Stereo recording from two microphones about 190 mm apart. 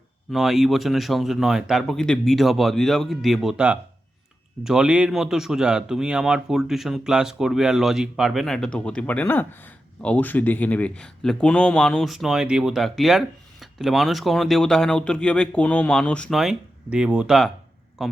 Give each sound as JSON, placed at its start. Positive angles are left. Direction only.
{"t": 0.3, "sound": "speech", "side_deg": 0}